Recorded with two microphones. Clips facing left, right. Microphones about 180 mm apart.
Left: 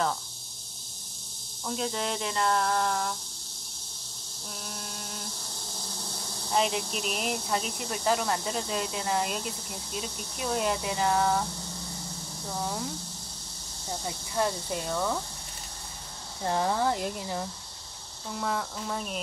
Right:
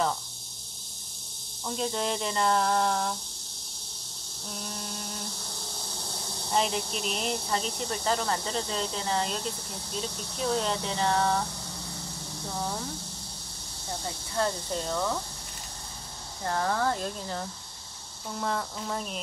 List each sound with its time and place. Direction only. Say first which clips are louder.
1.7 s speech: right 1 dB; centre (ahead or behind)
4.5 s a sound: right 3 dB; centre (ahead or behind)
6.5 s speech: left 1 dB; centre (ahead or behind)
14.3 s speech: even; 10° left (ahead or behind)
16.4 s speech: left 1 dB; 15° left (ahead or behind)